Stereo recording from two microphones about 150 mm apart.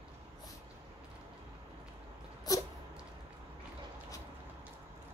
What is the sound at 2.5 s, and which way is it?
Cat, 25° left (ahead or behind).